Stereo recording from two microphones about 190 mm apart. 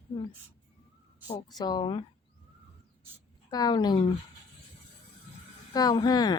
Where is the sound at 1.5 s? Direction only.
20° left (ahead or behind).